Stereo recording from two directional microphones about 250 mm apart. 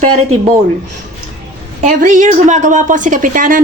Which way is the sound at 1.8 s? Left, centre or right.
Right.